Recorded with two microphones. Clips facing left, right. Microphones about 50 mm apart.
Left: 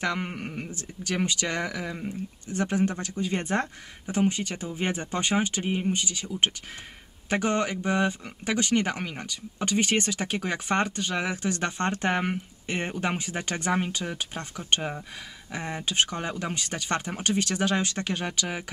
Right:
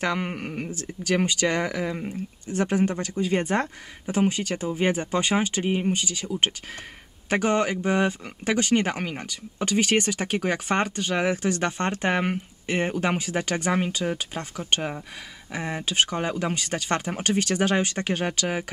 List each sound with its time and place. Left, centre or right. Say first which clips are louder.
0.0 s speech: right 3 dB; right
2.4 s speech: right 3 dB; right
7.2 s speech: right 3 dB; right